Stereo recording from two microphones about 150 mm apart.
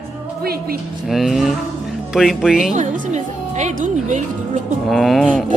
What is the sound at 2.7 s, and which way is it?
Speech, 50° right (ahead or behind).